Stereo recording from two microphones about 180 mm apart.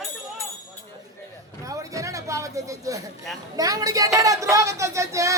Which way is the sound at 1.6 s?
20° right (ahead or behind).